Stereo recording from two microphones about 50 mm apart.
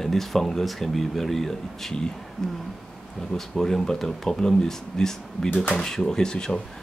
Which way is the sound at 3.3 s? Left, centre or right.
Centre.